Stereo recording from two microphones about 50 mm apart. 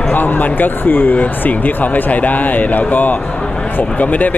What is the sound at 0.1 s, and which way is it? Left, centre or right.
Speech, left.